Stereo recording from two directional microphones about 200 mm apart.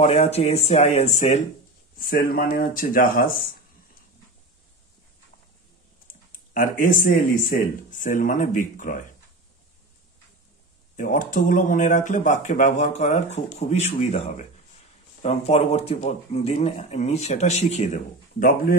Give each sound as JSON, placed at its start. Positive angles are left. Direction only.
{"t": 0.0, "sound": "speech", "side_deg": 30}
{"t": 2.0, "sound": "speech", "side_deg": 45}
{"t": 6.5, "sound": "speech", "side_deg": 45}
{"t": 11.0, "sound": "speech", "side_deg": 40}